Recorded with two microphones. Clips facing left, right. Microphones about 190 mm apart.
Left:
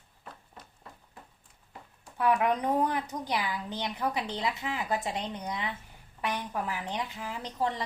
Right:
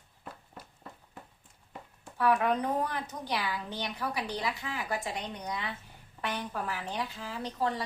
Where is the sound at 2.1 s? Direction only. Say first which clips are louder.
Left 1 dB; 15° left (ahead or behind).